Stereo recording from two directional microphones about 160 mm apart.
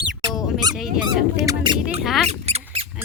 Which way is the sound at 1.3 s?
20° right (ahead or behind).